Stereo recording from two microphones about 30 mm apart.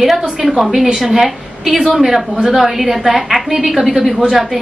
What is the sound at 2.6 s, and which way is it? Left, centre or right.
A woman's voice, centre.